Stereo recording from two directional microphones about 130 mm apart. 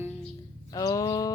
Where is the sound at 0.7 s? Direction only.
30° left (ahead or behind).